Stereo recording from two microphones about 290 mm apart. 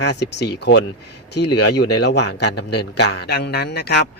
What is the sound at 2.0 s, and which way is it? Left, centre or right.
Speech, left.